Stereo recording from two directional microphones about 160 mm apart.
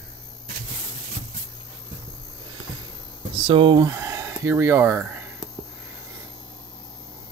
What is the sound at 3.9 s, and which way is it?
Speech, 20° right (ahead or behind).